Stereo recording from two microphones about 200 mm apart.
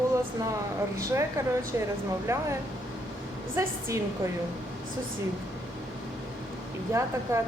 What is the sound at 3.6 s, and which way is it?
Speech, 15° right (ahead or behind).